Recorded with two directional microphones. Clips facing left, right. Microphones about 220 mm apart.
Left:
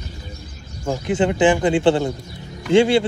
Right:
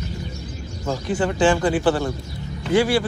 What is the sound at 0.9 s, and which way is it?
A man's voice, 20° left (ahead or behind).